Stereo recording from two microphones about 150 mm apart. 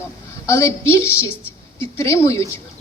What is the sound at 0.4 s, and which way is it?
A woman's voice, 20° left (ahead or behind).